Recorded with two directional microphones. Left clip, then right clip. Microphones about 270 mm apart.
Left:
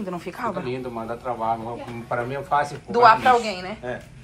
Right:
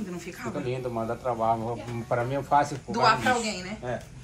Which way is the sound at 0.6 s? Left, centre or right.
Right.